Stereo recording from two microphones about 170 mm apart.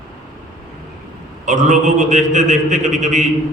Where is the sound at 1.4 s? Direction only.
45° right (ahead or behind).